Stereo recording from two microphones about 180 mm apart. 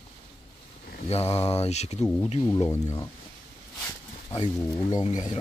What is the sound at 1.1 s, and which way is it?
Speech, 35° left (ahead or behind).